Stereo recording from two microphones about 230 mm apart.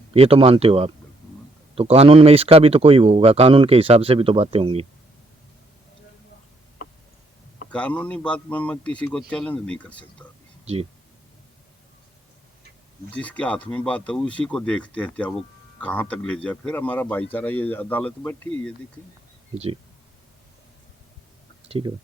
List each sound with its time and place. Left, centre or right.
0.1 s speech: right
7.7 s a man's voice: centre
13.1 s a man's voice: centre
19.5 s speech: right
21.7 s speech: right